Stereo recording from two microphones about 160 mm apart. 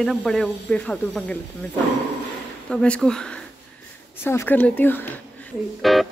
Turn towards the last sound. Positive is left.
turn(degrees=0)  # may be behind; listen again after turning